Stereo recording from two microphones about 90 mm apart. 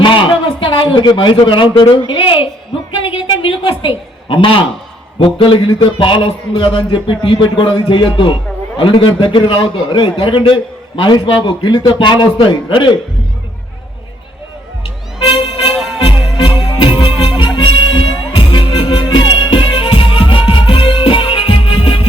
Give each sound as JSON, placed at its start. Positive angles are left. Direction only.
{"t": 0.0, "sound": "a sound", "side_deg": 65}
{"t": 5.4, "sound": "a man's voice", "side_deg": 80}
{"t": 14.8, "sound": "vehicle", "side_deg": 75}
{"t": 15.7, "sound": "music", "side_deg": 0}
{"t": 16.0, "sound": "music", "side_deg": 70}
{"t": 16.7, "sound": "music", "side_deg": 80}